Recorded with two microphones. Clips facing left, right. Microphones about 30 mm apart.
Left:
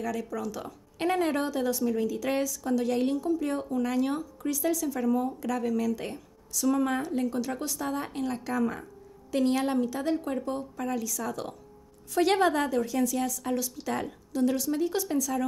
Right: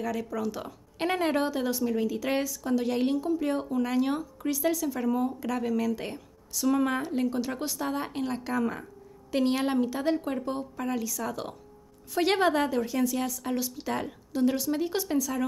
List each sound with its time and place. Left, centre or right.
0.0 s a woman's voice: centre